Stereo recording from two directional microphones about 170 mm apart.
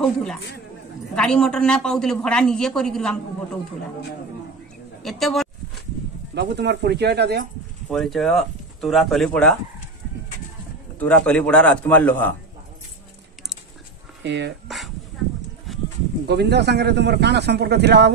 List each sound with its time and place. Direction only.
0.0 s speech: 5° left (ahead or behind)
5.0 s speech: centre (ahead or behind)
6.3 s a man's voice: 90° right
7.9 s speech: centre (ahead or behind)
11.0 s a man's voice: 5° left (ahead or behind)
14.2 s speech: 90° right
14.7 s dog: centre (ahead or behind)
16.3 s a man's voice: 80° right